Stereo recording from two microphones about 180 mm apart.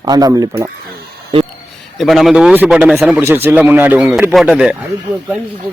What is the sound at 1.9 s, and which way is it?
A man's voice, centre (ahead or behind).